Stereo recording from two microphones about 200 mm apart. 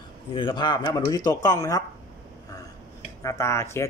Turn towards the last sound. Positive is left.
turn(degrees=15)  # may be behind; listen again after turning